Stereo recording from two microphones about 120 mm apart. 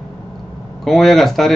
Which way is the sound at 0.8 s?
Centre (ahead or behind).